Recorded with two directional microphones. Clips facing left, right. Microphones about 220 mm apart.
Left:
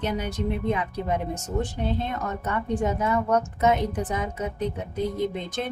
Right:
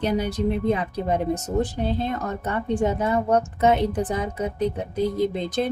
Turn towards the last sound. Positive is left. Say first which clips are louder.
# right 5 dB
turn(degrees=-35)  # may be behind; listen again after turning